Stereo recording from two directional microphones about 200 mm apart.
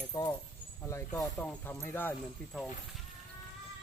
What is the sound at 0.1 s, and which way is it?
Keys jangling, 20° left (ahead or behind).